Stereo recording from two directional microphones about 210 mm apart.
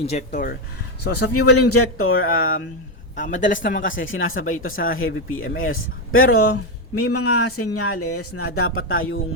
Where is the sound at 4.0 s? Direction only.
70° left (ahead or behind).